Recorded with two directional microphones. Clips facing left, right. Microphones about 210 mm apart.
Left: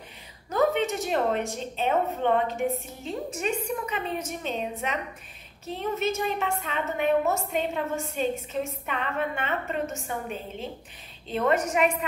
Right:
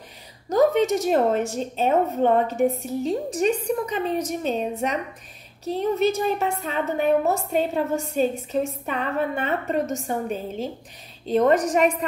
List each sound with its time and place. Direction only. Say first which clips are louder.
0.5 s a woman's voice: right 6 dB; 40° right (ahead or behind)